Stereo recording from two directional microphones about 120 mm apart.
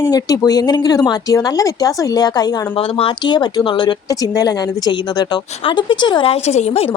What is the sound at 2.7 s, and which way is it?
Speech, 50° left (ahead or behind).